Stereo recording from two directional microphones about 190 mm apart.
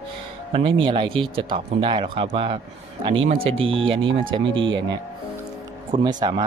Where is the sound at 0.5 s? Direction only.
25° right (ahead or behind).